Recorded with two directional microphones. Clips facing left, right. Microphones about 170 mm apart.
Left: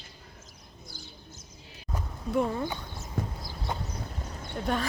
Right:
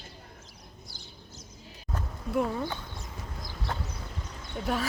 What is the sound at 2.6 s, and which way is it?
Horse, 10° left (ahead or behind).